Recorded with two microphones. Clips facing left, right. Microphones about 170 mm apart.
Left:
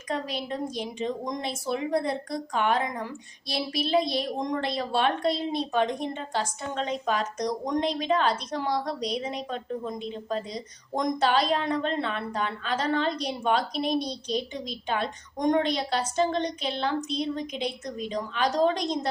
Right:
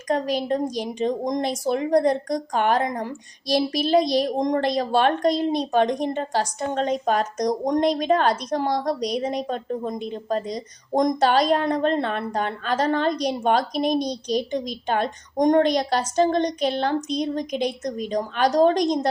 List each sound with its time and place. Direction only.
0.1 s a woman's voice: 45° right (ahead or behind)